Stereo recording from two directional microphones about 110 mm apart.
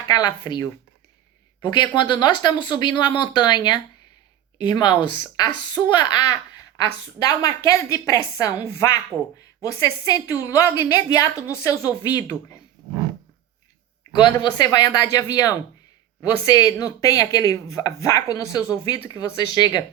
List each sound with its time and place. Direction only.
0.1 s speech: 35° left (ahead or behind)
9.1 s speech: 25° right (ahead or behind)
9.6 s speech: 30° left (ahead or behind)
14.3 s speech: 35° left (ahead or behind)